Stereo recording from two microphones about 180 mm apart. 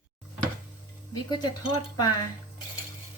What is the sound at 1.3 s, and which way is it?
Speech, 25° left (ahead or behind).